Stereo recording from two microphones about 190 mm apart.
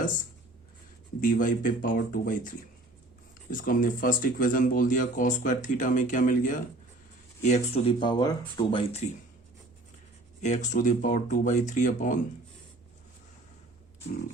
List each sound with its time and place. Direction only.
1.2 s speech: 45° left (ahead or behind)
7.9 s speech: 25° left (ahead or behind)
10.4 s speech: 40° left (ahead or behind)